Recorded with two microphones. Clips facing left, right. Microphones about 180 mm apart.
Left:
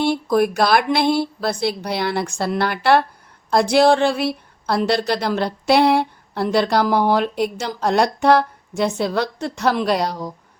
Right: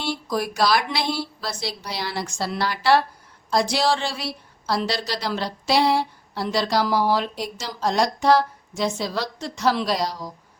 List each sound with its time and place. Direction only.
0.0 s speech: 55° left (ahead or behind)